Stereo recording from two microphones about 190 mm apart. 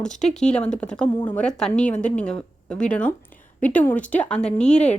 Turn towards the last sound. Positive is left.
turn(degrees=5)  # may be behind; listen again after turning